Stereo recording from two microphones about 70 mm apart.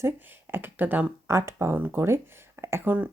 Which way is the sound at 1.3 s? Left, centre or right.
Right.